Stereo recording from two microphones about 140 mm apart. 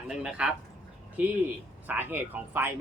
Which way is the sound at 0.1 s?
5° right (ahead or behind).